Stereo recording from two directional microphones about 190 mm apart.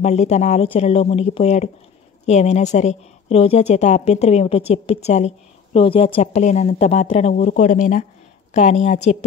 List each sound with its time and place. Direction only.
0.0 s speech: 35° left (ahead or behind)